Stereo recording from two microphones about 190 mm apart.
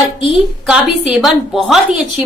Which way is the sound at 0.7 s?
Centre (ahead or behind).